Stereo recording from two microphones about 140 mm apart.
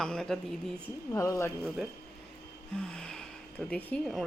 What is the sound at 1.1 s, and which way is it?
Speech, 20° left (ahead or behind).